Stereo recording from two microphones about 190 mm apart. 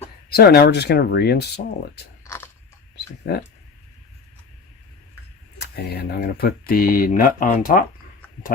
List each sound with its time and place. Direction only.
0.3 s speech: 55° left (ahead or behind)
2.2 s biting: 15° left (ahead or behind)
2.9 s a sound: 60° left (ahead or behind)
5.7 s speech: 55° left (ahead or behind)